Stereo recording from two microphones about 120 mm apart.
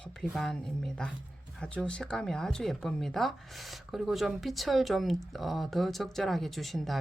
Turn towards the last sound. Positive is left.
turn(degrees=0)  # may be behind; listen again after turning